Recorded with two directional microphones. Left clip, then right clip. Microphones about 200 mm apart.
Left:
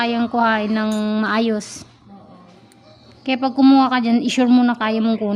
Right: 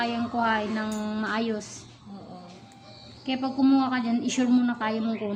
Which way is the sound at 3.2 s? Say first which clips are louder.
Left 10 dB; 60° left (ahead or behind).